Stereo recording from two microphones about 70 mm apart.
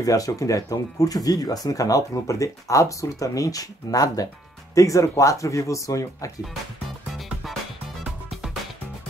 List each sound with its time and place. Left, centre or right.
0.0 s speech: left
7.4 s music: centre